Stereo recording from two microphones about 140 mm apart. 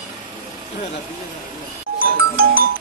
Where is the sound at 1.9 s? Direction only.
90° right.